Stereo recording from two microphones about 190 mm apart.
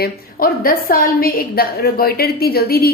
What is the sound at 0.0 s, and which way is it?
A woman's voice, 50° left (ahead or behind).